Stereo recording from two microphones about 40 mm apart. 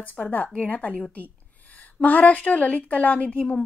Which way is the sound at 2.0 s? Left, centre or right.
Left.